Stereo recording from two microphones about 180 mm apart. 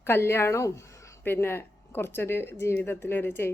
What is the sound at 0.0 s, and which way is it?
Speech, 15° left (ahead or behind).